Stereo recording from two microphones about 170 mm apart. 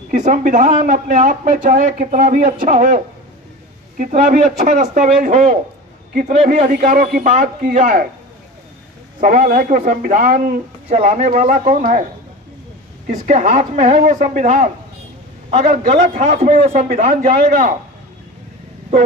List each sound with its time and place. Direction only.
0.1 s speech: 45° right (ahead or behind)
4.0 s speech: 50° right (ahead or behind)
9.2 s speech: 50° right (ahead or behind)
13.0 s speech: 50° right (ahead or behind)
16.4 s speech: 55° right (ahead or behind)